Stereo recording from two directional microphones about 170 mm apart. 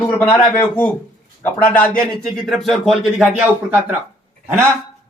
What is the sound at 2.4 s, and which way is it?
Speech, centre (ahead or behind).